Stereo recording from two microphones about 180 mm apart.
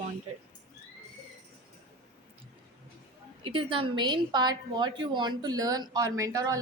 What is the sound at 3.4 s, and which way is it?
A woman's voice, 30° right (ahead or behind).